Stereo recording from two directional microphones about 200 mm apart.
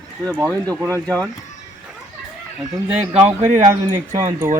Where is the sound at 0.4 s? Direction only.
15° right (ahead or behind).